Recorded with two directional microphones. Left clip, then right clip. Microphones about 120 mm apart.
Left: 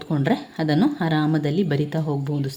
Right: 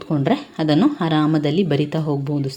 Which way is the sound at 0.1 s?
15° right (ahead or behind).